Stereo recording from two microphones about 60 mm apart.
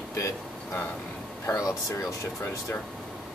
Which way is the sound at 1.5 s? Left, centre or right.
Left.